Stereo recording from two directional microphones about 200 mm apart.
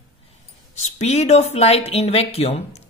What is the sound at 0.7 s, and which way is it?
Speech, 35° left (ahead or behind).